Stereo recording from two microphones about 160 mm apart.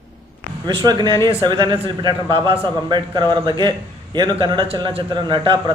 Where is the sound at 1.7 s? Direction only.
35° right (ahead or behind).